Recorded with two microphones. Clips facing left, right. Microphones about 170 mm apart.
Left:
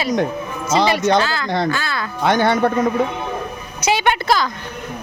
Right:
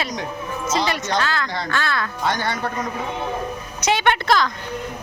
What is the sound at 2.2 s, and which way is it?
Speech, 60° left (ahead or behind).